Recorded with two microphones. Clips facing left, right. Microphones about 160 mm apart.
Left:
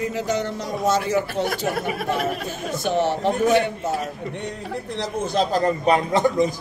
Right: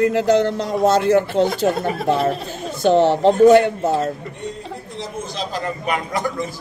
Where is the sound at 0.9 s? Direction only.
60° right (ahead or behind).